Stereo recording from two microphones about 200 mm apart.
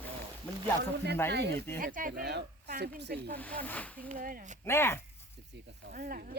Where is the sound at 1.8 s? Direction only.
45° right (ahead or behind).